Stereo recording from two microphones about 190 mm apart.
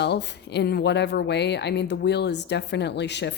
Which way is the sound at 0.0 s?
60° left (ahead or behind).